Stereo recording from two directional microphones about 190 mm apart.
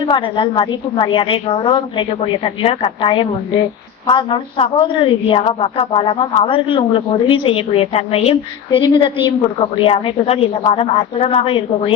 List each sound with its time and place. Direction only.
0.0 s a woman's voice: 25° left (ahead or behind)